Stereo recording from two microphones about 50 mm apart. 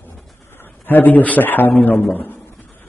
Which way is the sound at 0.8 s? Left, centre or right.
Left.